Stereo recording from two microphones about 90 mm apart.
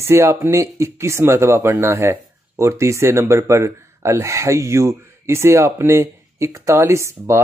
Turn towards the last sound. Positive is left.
turn(degrees=-30)  # may be behind; listen again after turning